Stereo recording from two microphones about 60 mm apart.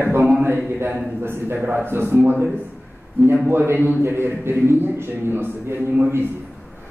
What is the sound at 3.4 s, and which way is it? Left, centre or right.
A man's voice, right.